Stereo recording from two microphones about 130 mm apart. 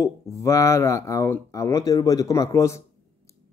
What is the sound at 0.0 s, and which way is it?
Speech, 25° left (ahead or behind).